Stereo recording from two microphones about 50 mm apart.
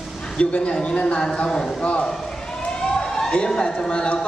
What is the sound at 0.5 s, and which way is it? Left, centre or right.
Speech, left.